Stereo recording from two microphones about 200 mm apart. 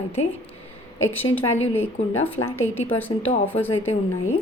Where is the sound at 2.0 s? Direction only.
35° left (ahead or behind).